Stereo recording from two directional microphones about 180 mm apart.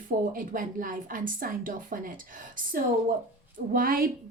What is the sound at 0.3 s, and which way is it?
A woman's voice, 50° right (ahead or behind).